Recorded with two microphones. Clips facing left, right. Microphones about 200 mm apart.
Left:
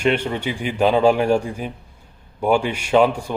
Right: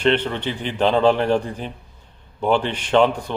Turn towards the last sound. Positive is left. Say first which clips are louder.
# left 1 dB
turn(degrees=10)  # may be behind; listen again after turning